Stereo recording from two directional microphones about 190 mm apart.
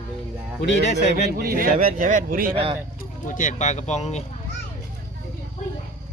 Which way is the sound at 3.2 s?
45° left (ahead or behind).